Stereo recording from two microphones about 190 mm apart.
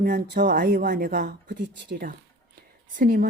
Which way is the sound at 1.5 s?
60° right (ahead or behind).